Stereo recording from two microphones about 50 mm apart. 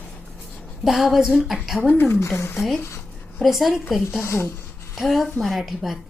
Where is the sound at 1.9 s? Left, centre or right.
Left.